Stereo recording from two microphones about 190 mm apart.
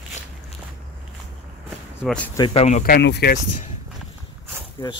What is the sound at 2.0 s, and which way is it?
Speech, 5° left (ahead or behind).